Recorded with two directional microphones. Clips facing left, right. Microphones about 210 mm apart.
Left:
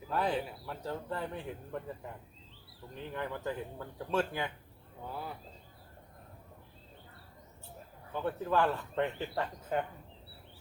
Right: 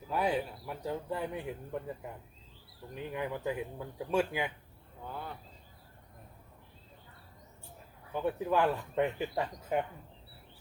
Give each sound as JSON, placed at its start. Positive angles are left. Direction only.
{"t": 0.1, "sound": "speech", "side_deg": -10}
{"t": 2.9, "sound": "speech", "side_deg": -10}
{"t": 5.0, "sound": "speech", "side_deg": 5}
{"t": 8.1, "sound": "speech", "side_deg": -10}